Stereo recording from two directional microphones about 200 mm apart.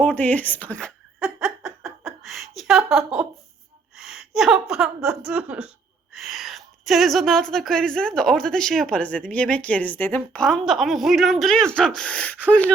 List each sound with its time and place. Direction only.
0.0 s giggle: 10° left (ahead or behind)
3.9 s gasp: centre (ahead or behind)
4.7 s a woman's voice: 5° right (ahead or behind)